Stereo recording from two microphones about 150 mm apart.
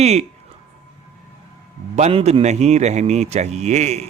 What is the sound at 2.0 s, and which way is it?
A man's voice, 45° right (ahead or behind).